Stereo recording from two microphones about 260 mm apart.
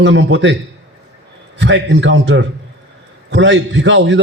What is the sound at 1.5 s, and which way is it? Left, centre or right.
A man's voice, right.